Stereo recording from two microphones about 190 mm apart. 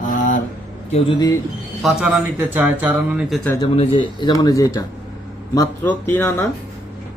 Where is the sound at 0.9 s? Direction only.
25° left (ahead or behind).